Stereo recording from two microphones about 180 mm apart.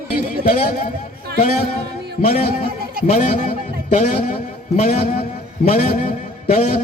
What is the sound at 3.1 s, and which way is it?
A woman's voice, 40° left (ahead or behind).